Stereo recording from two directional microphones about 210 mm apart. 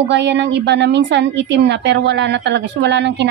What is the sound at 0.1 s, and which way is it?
A woman's voice, 55° right (ahead or behind).